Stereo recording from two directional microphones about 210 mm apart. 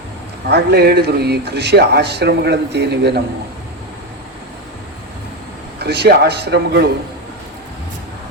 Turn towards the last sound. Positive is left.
turn(degrees=-50)  # may be behind; listen again after turning